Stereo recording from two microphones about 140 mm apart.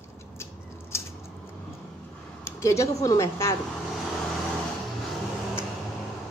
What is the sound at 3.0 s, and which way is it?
Speech, 20° left (ahead or behind).